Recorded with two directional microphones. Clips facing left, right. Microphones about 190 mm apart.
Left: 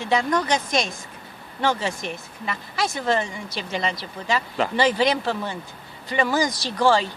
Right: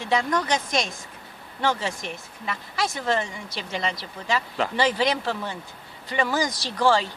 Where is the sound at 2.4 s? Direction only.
15° left (ahead or behind).